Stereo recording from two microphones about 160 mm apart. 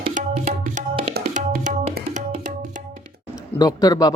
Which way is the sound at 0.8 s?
50° right (ahead or behind).